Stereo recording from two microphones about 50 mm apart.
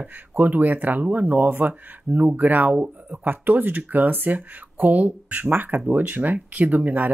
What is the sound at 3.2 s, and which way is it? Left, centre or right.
Speech, right.